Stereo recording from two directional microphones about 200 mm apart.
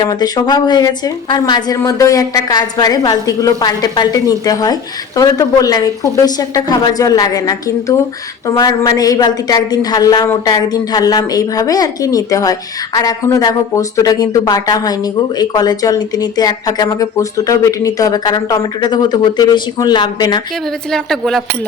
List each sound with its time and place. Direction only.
0.0 s a woman's voice: 20° left (ahead or behind)
20.9 s speech: centre (ahead or behind)